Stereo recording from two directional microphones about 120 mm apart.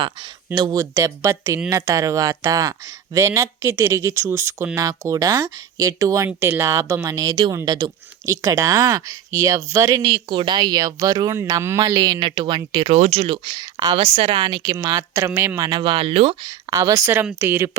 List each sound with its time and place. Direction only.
0.5 s speech: 30° right (ahead or behind)
10.0 s speech: 45° right (ahead or behind)
12.9 s speech: 60° right (ahead or behind); by 14.0 s 35° right (ahead or behind)
14.0 s speech: 50° right (ahead or behind)
14.9 s speech: 25° right (ahead or behind)
15.6 s speech: 40° right (ahead or behind); by 16.4 s 55° right (ahead or behind)
16.4 s speech: 35° right (ahead or behind); by 17.7 s 20° right (ahead or behind)